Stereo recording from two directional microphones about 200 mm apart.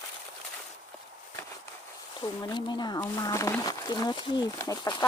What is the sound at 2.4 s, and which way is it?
Speech, 20° left (ahead or behind).